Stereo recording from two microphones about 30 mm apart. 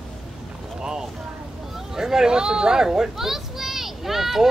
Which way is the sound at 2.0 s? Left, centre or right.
Centre.